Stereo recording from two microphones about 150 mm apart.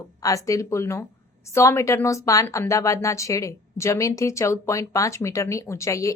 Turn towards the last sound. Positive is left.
turn(degrees=20)  # may be behind; listen again after turning